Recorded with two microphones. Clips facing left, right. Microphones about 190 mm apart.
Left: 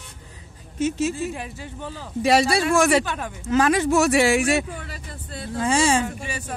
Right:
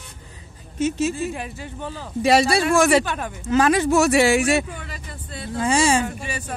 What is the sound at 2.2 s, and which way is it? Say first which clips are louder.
Speech: right 1 dB; 30° right (ahead or behind).